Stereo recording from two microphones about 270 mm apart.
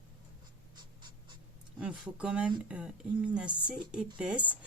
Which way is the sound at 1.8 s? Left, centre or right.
Centre.